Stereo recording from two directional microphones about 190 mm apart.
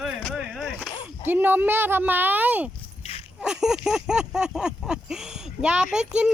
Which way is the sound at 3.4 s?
5° right (ahead or behind).